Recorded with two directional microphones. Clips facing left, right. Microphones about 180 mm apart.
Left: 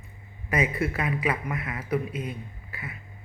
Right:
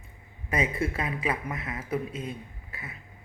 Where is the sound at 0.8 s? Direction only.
25° right (ahead or behind).